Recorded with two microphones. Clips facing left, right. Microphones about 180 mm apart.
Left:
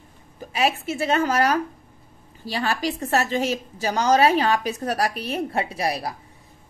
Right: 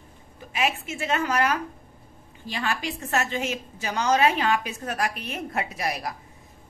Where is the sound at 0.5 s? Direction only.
35° left (ahead or behind).